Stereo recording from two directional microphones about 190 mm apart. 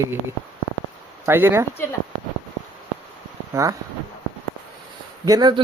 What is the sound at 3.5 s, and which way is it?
Speech, 15° right (ahead or behind).